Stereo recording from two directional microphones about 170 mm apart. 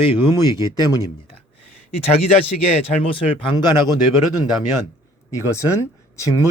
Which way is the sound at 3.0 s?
30° left (ahead or behind).